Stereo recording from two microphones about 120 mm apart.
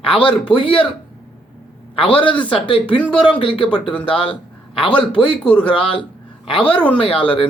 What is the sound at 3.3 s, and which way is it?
Speech, 45° left (ahead or behind).